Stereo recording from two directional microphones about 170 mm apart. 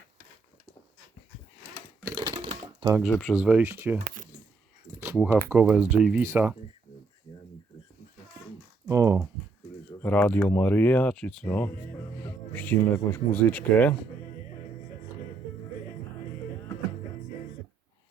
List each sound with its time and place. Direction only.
2.1 s typewriter: 25° right (ahead or behind)
3.1 s speech: 5° left (ahead or behind)
3.3 s speech: 10° right (ahead or behind)
5.2 s speech: 15° right (ahead or behind)
8.9 s speech: 20° right (ahead or behind)
10.0 s speech: 10° left (ahead or behind)